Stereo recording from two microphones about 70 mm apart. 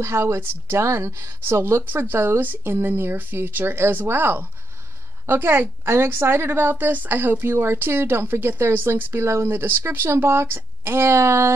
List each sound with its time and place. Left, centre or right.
0.0 s a woman's voice: right